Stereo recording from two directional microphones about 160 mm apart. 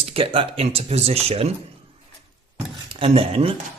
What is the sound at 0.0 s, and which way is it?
Speech, 35° right (ahead or behind).